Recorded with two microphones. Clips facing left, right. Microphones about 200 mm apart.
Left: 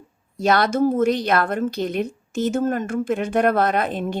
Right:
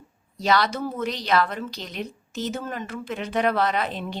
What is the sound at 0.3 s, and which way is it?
A woman's voice, 50° left (ahead or behind).